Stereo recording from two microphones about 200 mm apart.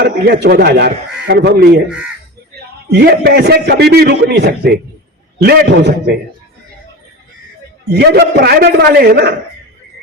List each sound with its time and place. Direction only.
0.0 s a man's voice: 50° right (ahead or behind)
2.9 s a man's voice: 55° right (ahead or behind)
7.9 s a man's voice: 55° right (ahead or behind)